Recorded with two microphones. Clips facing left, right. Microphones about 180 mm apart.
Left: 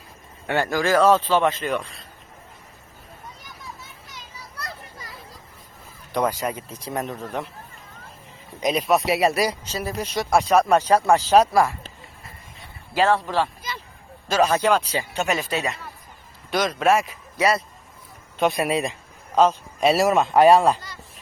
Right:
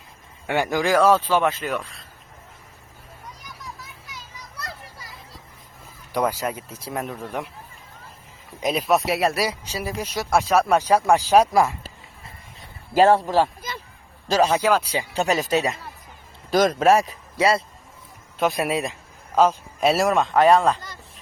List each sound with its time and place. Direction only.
0.4 s speech: 15° right (ahead or behind)
6.1 s speech: 5° right (ahead or behind)
8.6 s speech: centre (ahead or behind)
12.9 s a man's voice: 45° right (ahead or behind)
14.3 s speech: 35° right (ahead or behind)
14.5 s speech: 10° right (ahead or behind)
15.1 s speech: 35° right (ahead or behind)
18.3 s speech: centre (ahead or behind)